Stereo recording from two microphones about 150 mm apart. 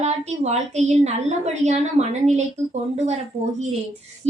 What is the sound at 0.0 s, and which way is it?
A woman's voice, 50° right (ahead or behind).